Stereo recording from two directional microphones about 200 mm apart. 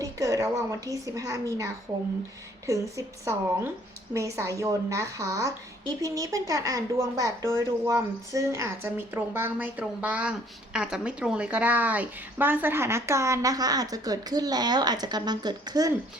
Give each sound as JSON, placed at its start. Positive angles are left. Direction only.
{"t": 0.0, "sound": "a woman's voice", "side_deg": -15}